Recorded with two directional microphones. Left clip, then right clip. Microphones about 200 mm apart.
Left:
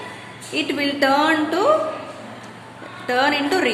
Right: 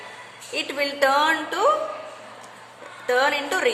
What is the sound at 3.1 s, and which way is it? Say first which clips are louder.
Speech: left 2 dB; 20° right (ahead or behind).